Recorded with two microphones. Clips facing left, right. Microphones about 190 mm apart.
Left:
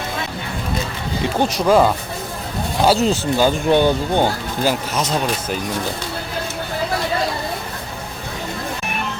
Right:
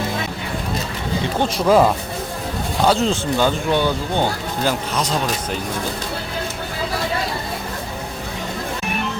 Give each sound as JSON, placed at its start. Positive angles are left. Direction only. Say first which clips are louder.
{"t": 1.5, "sound": "speech", "louder": "right 1 dB", "side_deg": 0}
{"t": 3.7, "sound": "speech", "louder": "left 4 dB", "side_deg": 20}